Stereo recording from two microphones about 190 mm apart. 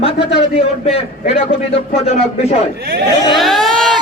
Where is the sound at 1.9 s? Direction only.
30° left (ahead or behind).